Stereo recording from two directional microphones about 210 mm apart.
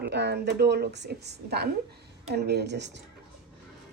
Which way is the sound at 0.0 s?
55° right (ahead or behind).